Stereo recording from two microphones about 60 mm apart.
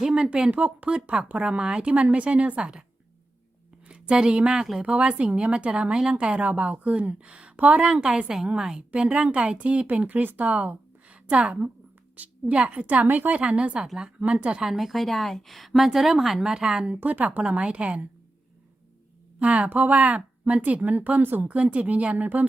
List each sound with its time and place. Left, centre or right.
0.0 s speech: centre
3.8 s speech: centre
13.8 s a woman's voice: centre
14.2 s speech: right
14.6 s a woman's voice: centre
16.9 s speech: right
19.4 s speech: right
21.4 s speech: right